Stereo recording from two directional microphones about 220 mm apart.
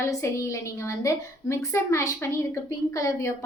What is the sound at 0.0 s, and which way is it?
A woman's voice, 15° left (ahead or behind).